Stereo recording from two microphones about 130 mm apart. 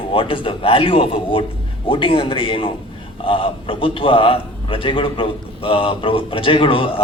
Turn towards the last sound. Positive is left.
turn(degrees=45)  # may be behind; listen again after turning